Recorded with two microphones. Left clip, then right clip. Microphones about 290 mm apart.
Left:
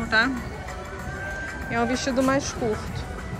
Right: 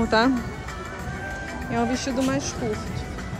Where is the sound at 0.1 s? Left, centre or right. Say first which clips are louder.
Even; right.